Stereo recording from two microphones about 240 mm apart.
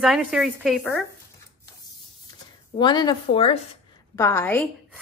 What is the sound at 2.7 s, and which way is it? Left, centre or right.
Speech, centre.